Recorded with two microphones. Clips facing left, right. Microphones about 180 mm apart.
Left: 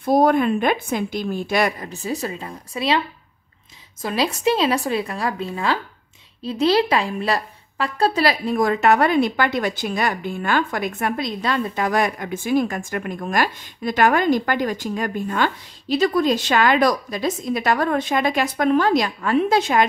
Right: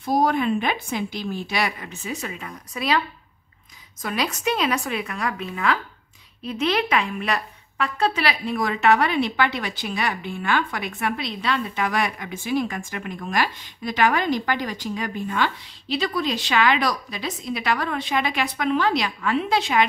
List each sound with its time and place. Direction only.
0.0 s a woman's voice: 50° left (ahead or behind); by 3.0 s 25° left (ahead or behind)
4.0 s a woman's voice: 30° left (ahead or behind); by 19.8 s 45° left (ahead or behind)